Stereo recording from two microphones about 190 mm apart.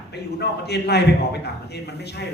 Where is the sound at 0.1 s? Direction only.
60° left (ahead or behind).